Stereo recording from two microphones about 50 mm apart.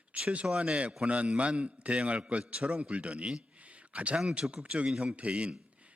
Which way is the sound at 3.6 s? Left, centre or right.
Right.